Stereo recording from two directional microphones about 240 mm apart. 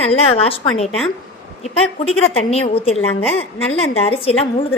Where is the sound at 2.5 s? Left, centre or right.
Left.